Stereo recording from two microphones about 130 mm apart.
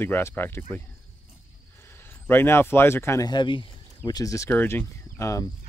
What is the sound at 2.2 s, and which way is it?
Speech, 20° left (ahead or behind).